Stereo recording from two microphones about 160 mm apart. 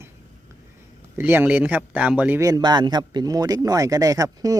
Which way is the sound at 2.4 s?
20° right (ahead or behind).